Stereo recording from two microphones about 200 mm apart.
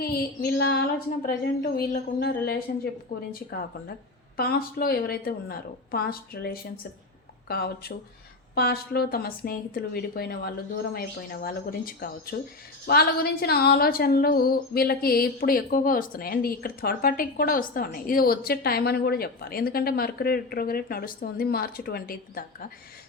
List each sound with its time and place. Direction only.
0.0 s speech: 50° left (ahead or behind)
4.4 s speech: 50° left (ahead or behind)